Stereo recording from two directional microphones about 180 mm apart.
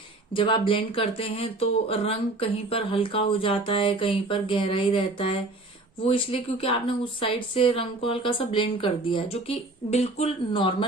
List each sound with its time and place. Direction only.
0.3 s a woman's voice: 25° left (ahead or behind)